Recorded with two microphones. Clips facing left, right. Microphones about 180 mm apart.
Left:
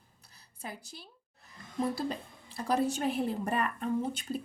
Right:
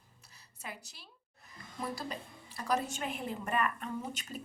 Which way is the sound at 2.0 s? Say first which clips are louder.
Left 6 dB; 30° left (ahead or behind).